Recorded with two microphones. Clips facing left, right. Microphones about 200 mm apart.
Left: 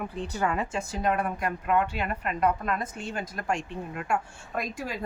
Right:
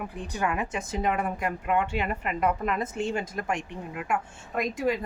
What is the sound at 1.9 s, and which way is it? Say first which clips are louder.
Speech: right 2 dB; 20° right (ahead or behind).